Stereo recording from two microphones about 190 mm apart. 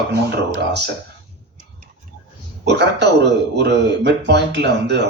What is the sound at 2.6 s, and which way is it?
Speech, 65° right (ahead or behind).